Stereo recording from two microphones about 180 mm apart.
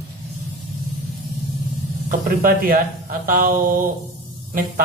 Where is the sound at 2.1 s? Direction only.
50° right (ahead or behind).